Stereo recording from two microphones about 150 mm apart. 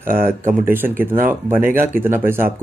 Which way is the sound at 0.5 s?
15° right (ahead or behind).